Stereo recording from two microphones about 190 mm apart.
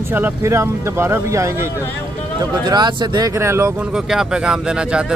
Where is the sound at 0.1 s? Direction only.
10° right (ahead or behind).